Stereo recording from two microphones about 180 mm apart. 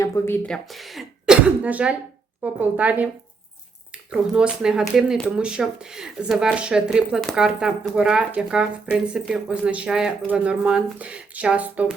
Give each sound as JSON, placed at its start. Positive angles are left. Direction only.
{"t": 0.0, "sound": "speech", "side_deg": 15}
{"t": 0.4, "sound": "a woman's voice", "side_deg": 0}
{"t": 4.1, "sound": "speech", "side_deg": -5}